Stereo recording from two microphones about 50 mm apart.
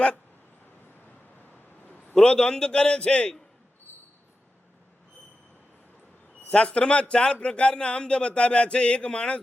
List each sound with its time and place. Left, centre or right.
2.1 s a man's voice: centre
3.9 s a sound: left
6.5 s speech: left